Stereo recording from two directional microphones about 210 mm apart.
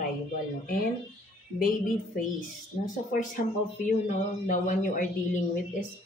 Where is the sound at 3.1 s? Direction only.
40° left (ahead or behind).